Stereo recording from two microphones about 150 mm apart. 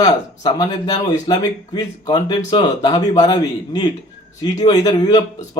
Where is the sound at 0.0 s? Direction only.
25° left (ahead or behind).